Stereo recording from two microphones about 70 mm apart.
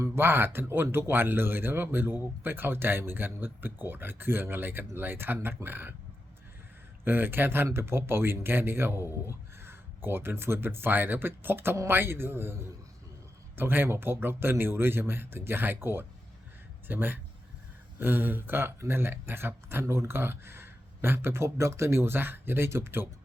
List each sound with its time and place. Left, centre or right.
0.2 s speech: right
7.0 s speech: right
13.6 s speech: right